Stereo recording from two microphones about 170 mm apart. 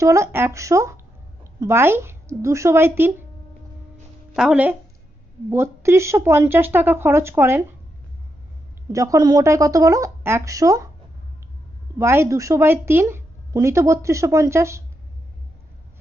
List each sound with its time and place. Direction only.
0.0 s a woman's voice: 15° right (ahead or behind)
4.4 s a woman's voice: 5° right (ahead or behind)
8.9 s a woman's voice: 20° right (ahead or behind)
11.9 s a woman's voice: 15° right (ahead or behind)